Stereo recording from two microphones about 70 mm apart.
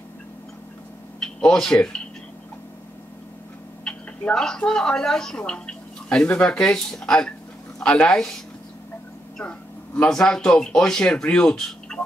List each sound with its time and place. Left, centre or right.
1.2 s speech: centre
3.8 s speech: centre
9.4 s vehicle: centre
10.0 s speech: centre